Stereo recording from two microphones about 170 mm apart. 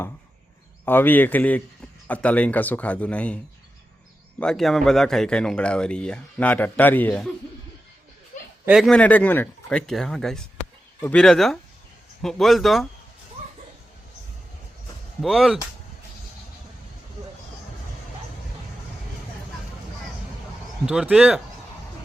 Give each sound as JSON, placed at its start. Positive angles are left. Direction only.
{"t": 0.9, "sound": "a man's voice", "side_deg": 10}
{"t": 8.6, "sound": "a man's voice", "side_deg": -5}
{"t": 15.2, "sound": "a man's voice", "side_deg": -5}
{"t": 20.8, "sound": "a man's voice", "side_deg": -5}